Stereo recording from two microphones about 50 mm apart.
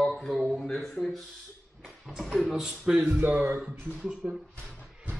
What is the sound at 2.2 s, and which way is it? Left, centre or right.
Speech, centre.